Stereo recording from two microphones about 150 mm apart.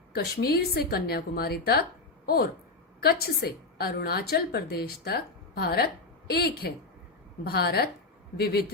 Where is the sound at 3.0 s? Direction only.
90° left.